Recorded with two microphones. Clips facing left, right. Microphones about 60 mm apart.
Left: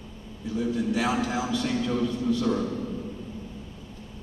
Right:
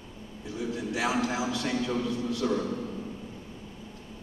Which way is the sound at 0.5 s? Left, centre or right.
Centre.